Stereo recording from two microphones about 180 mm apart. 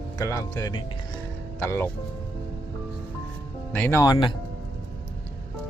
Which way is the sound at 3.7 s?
10° left (ahead or behind).